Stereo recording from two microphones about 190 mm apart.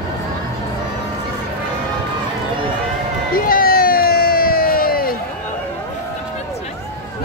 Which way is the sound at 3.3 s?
50° left (ahead or behind).